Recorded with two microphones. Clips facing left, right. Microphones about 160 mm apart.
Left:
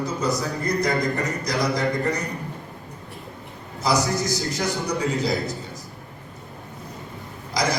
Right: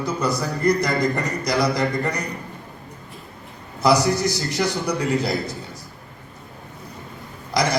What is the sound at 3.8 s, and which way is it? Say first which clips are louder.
A man's voice: right 4 dB; 65° right (ahead or behind).